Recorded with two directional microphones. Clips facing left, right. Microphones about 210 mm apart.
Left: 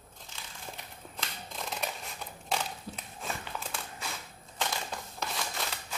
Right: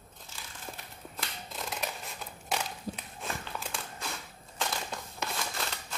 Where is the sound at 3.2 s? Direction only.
Centre (ahead or behind).